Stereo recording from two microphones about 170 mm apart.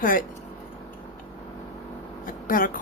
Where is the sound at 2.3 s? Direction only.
55° left (ahead or behind).